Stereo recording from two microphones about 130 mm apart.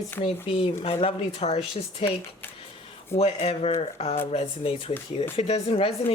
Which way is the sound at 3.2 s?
55° left (ahead or behind).